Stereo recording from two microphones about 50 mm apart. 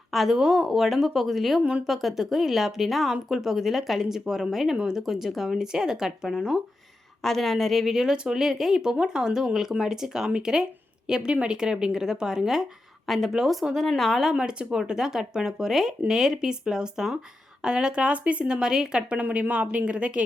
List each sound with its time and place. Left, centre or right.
0.1 s speech: centre
0.3 s speech: centre
0.6 s speech: centre
7.2 s speech: centre
7.9 s speech: centre
14.3 s speech: centre